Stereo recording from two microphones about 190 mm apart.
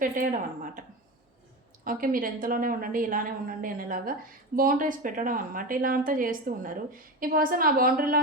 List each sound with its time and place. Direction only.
0.0 s a woman's voice: 45° right (ahead or behind)